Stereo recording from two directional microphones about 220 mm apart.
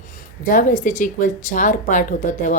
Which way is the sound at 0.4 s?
35° left (ahead or behind).